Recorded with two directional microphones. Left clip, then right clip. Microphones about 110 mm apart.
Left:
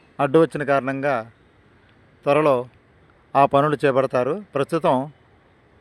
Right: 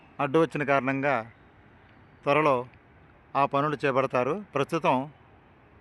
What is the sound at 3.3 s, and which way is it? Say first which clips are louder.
Speech: left 9 dB; 80° left.